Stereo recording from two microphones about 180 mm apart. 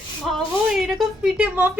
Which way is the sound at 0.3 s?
Centre (ahead or behind).